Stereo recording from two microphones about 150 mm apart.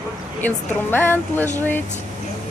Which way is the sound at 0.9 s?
15° left (ahead or behind).